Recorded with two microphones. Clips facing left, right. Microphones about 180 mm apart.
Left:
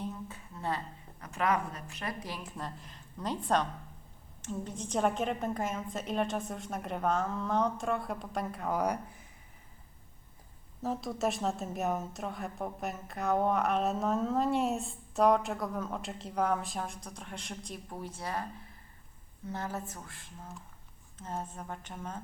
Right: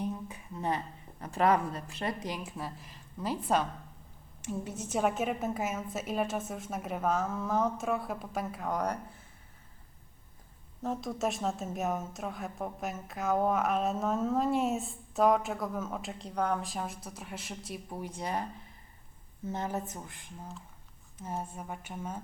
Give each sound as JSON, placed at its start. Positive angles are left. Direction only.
{"t": 0.0, "sound": "a sound", "side_deg": -15}
{"t": 1.2, "sound": "speech", "side_deg": -30}
{"t": 2.6, "sound": "a woman's voice", "side_deg": -5}
{"t": 10.8, "sound": "a woman's voice", "side_deg": 0}
{"t": 19.5, "sound": "speech", "side_deg": -20}